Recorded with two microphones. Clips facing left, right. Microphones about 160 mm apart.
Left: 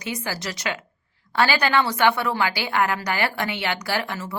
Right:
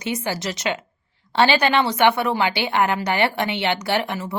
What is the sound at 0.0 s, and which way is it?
A woman's voice, 25° right (ahead or behind).